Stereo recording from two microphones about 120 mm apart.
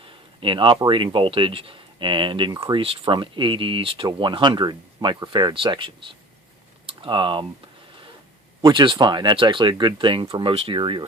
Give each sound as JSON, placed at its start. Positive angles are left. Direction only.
{"t": 0.0, "sound": "a sound", "side_deg": -45}
{"t": 0.9, "sound": "speech", "side_deg": -45}
{"t": 8.6, "sound": "speech", "side_deg": -40}